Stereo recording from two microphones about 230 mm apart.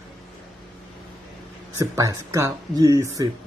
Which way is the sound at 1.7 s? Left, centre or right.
Centre.